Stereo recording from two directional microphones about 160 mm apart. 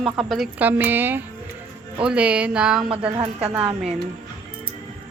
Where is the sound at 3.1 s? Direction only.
35° right (ahead or behind).